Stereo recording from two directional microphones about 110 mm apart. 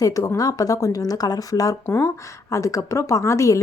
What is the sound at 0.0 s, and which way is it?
A woman's voice, 30° left (ahead or behind).